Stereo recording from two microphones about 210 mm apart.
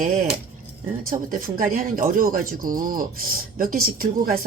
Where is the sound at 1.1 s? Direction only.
40° right (ahead or behind).